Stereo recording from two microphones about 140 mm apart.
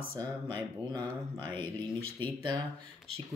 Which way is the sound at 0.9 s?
30° right (ahead or behind).